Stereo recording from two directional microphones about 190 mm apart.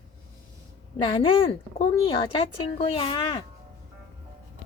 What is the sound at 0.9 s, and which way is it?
Speech, 25° left (ahead or behind).